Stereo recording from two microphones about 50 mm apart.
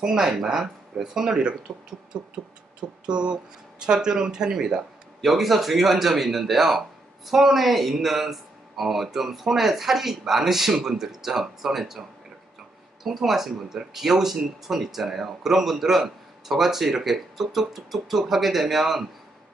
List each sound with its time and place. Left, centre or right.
0.0 s speech: centre
3.1 s speech: centre
13.0 s speech: centre